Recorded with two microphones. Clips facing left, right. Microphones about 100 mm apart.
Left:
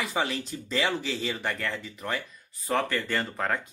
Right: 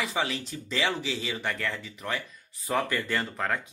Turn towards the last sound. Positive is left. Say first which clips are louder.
# left 1 dB
turn(degrees=0)  # may be behind; listen again after turning